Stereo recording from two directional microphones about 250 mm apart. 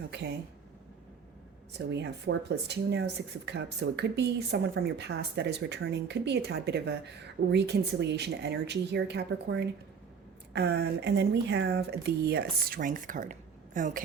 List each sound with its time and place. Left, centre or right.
0.1 s speech: right
1.9 s speech: right